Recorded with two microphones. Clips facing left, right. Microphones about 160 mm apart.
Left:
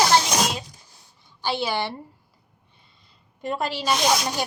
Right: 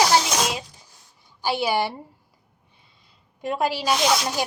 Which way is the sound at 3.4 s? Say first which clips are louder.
Right 3 dB; 5° right (ahead or behind).